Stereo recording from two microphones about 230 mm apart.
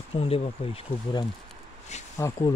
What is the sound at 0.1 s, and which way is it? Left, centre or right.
Speech, left.